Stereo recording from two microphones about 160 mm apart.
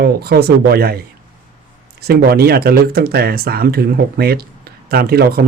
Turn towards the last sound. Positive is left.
turn(degrees=-75)  # may be behind; listen again after turning